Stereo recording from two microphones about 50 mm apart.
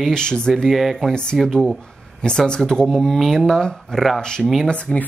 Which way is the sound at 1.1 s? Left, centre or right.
Centre.